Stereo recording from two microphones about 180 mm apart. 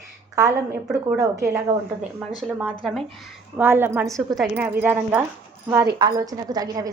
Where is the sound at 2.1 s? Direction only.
5° right (ahead or behind).